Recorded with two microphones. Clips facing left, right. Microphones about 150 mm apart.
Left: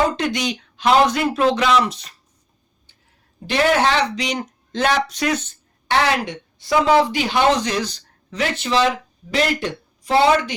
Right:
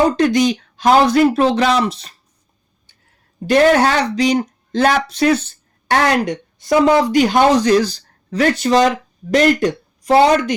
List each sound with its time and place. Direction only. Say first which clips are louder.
0.2 s speech: right 9 dB; 35° right (ahead or behind)
3.5 s speech: right 5 dB; 45° right (ahead or behind)
5.9 s speech: right 4 dB; 50° right (ahead or behind)